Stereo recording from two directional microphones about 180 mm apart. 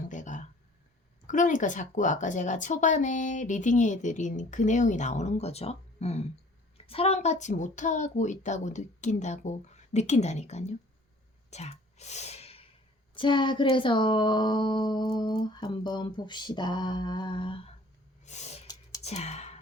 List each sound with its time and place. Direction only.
0.1 s a sound: 45° left (ahead or behind)
1.3 s a woman's voice: 45° left (ahead or behind)
11.5 s gasp: 35° left (ahead or behind)
13.1 s speech: 25° left (ahead or behind)
18.2 s snort: 40° left (ahead or behind)
18.7 s whispering: 20° left (ahead or behind)
19.0 s sigh: 35° left (ahead or behind)